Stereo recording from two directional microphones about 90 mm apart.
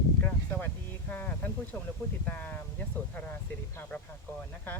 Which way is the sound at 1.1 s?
20° left (ahead or behind).